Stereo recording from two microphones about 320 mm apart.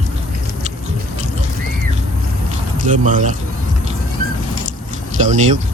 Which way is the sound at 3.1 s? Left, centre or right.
Right.